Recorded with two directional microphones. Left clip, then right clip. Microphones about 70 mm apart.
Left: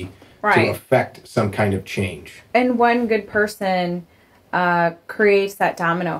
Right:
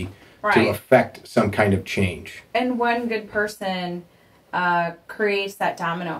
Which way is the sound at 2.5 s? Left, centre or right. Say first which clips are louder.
Left 5 dB; left.